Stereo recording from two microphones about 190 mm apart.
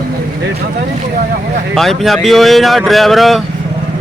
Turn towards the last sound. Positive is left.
turn(degrees=0)  # may be behind; listen again after turning